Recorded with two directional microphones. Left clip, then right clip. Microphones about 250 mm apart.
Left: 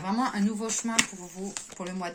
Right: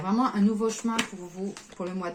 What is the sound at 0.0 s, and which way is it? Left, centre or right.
Speech, left.